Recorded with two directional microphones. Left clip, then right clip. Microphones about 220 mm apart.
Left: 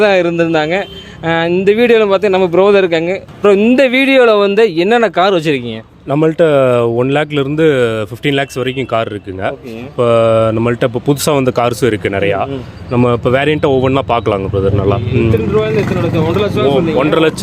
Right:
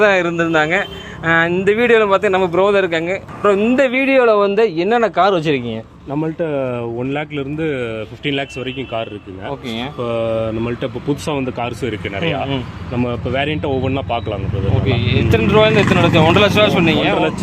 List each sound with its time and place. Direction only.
0.0 s a man's voice: 50° left (ahead or behind); by 5.6 s 30° left (ahead or behind)
6.1 s a man's voice: 50° left (ahead or behind)
15.5 s speech: 15° right (ahead or behind)